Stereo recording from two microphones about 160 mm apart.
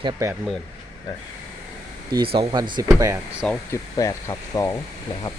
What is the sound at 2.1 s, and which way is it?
Speech, 30° right (ahead or behind).